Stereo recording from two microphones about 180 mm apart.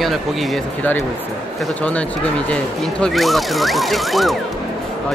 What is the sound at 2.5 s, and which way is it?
Speech, 5° left (ahead or behind).